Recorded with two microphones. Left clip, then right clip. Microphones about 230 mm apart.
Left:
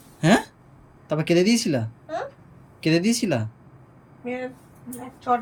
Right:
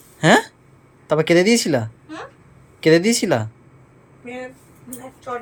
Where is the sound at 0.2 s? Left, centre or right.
Centre.